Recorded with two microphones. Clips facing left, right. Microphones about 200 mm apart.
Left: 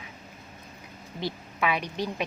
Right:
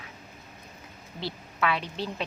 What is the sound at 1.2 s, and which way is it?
A woman's voice, 15° left (ahead or behind).